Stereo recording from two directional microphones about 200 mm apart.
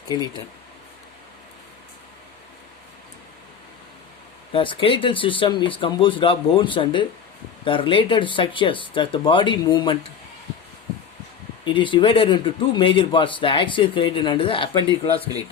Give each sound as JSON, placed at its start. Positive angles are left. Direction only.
{"t": 0.1, "sound": "a man's voice", "side_deg": 20}
{"t": 4.5, "sound": "a man's voice", "side_deg": 25}
{"t": 11.6, "sound": "a man's voice", "side_deg": 25}